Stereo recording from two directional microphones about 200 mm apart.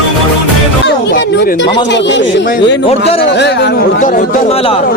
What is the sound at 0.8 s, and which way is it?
Speech, 55° left (ahead or behind).